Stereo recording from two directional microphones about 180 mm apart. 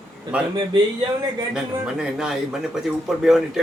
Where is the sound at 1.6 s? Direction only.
5° right (ahead or behind).